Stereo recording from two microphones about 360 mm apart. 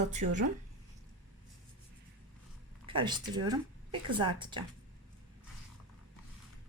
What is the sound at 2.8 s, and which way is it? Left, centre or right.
A woman's voice, centre.